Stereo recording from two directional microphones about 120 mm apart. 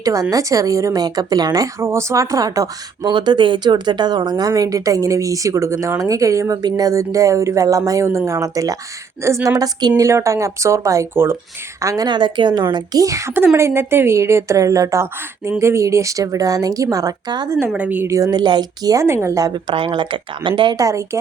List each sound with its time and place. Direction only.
0.0 s a woman's voice: 30° right (ahead or behind)
17.7 s speech: 15° right (ahead or behind)
18.1 s a woman's voice: 30° right (ahead or behind)
19.6 s speech: 45° right (ahead or behind)
20.7 s a woman's voice: 25° right (ahead or behind)